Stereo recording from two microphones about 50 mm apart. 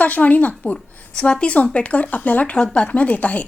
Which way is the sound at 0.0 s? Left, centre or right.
Left.